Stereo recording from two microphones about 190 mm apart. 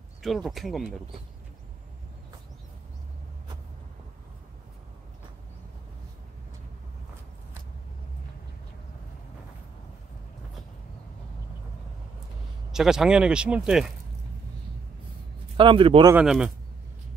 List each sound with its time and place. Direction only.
0.2 s speech: centre (ahead or behind)
12.7 s speech: 5° right (ahead or behind)
15.5 s a man's voice: 25° right (ahead or behind)
16.1 s speech: 5° right (ahead or behind)